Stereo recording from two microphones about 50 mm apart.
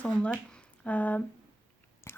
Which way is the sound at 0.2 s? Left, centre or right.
Left.